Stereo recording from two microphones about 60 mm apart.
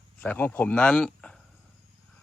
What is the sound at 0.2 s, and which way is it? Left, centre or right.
Speech, left.